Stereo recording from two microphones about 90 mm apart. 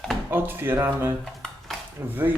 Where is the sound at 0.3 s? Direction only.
25° right (ahead or behind).